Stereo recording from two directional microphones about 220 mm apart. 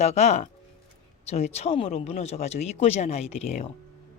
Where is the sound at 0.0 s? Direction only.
30° left (ahead or behind).